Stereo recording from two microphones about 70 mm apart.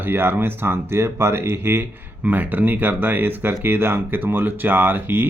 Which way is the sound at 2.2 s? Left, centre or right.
Right.